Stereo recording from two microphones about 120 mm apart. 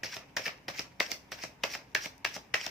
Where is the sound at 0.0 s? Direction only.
Centre (ahead or behind).